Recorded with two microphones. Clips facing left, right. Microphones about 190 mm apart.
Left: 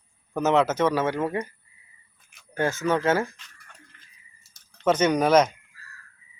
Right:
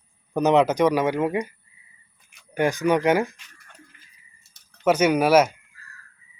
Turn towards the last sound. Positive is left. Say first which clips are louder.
# right 2 dB
turn(degrees=-10)  # may be behind; listen again after turning